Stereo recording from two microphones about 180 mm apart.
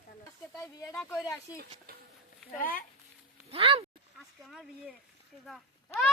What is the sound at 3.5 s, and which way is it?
Speech, 30° right (ahead or behind).